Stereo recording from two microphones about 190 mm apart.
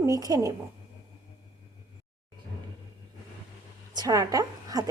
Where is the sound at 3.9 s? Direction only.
20° right (ahead or behind).